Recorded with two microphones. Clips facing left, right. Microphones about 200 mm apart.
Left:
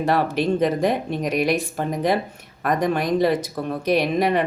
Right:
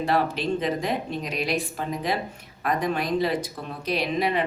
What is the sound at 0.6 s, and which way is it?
Speech, 45° left (ahead or behind).